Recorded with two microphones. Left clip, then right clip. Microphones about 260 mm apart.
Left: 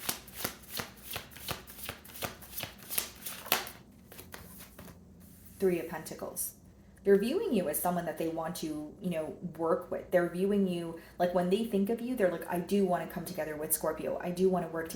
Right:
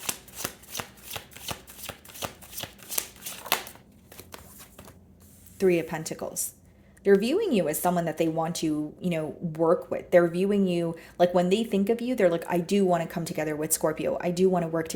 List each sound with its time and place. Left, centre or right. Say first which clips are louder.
0.0 s chopping: right 3 dB; right
5.5 s speech: right 7 dB; right